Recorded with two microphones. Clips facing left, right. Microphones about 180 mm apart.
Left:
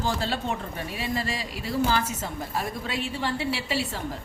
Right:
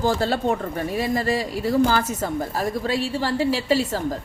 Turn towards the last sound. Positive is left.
turn(degrees=-40)  # may be behind; listen again after turning